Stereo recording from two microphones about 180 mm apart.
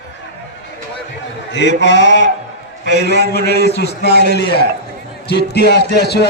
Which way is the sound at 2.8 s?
65° left (ahead or behind).